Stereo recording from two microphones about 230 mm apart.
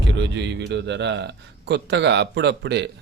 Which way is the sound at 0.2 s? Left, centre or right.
Right.